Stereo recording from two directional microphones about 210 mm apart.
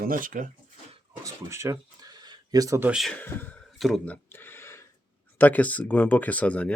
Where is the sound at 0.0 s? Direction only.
40° right (ahead or behind).